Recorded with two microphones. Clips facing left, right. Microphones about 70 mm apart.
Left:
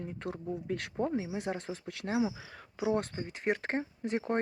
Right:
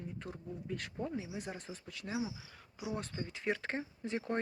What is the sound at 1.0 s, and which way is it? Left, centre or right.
Speech, left.